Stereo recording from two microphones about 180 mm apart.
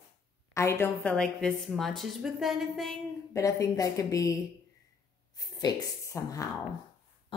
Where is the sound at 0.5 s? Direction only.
15° left (ahead or behind); by 2.9 s centre (ahead or behind).